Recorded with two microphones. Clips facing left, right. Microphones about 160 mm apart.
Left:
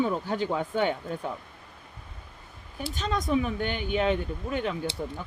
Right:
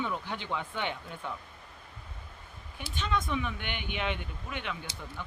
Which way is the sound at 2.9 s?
40° left (ahead or behind).